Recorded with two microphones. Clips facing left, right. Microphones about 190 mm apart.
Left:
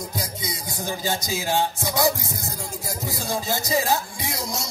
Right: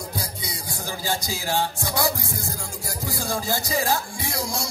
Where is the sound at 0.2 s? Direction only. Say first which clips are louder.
Left 2 dB; 20° left (ahead or behind).